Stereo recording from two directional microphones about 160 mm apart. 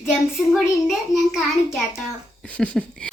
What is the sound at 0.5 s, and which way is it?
A child's voice, centre (ahead or behind).